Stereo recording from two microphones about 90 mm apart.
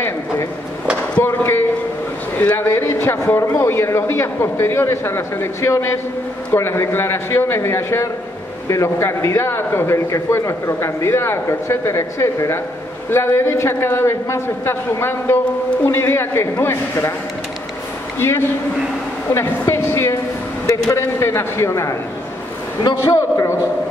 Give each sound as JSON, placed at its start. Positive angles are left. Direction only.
{"t": 1.2, "sound": "a man's voice", "side_deg": 25}
{"t": 18.2, "sound": "a man's voice", "side_deg": 30}
{"t": 19.3, "sound": "a sound", "side_deg": 30}
{"t": 20.9, "sound": "a man's voice", "side_deg": 30}